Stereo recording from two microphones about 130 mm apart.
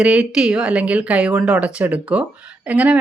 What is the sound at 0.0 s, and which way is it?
Speech, 10° right (ahead or behind).